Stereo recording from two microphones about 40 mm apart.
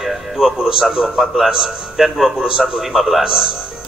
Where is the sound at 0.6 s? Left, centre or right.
Centre.